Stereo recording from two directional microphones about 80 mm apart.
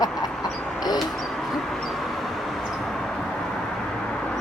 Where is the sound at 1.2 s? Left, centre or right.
Centre.